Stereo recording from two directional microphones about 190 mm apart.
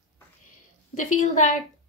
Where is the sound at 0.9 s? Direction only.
40° left (ahead or behind).